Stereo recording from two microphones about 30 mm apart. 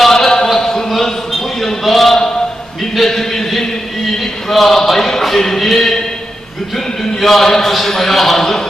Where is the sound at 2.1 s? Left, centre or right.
Left.